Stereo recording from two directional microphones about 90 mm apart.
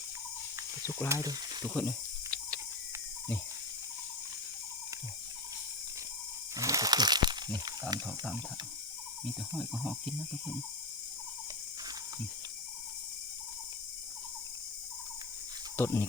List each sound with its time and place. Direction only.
1.0 s speech: 35° right (ahead or behind)
1.6 s a sound: 20° left (ahead or behind)
6.6 s wild animals: 40° right (ahead or behind)
8.0 s speech: 10° left (ahead or behind)
9.6 s speech: 5° right (ahead or behind)
15.7 s speech: 25° left (ahead or behind)